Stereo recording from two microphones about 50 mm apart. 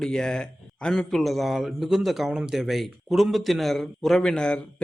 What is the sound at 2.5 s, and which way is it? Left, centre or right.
A man's voice, centre.